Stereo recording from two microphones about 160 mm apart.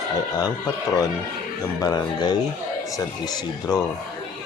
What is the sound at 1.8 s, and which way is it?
Speech, 25° left (ahead or behind).